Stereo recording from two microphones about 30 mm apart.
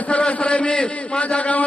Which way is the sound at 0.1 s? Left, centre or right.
Left.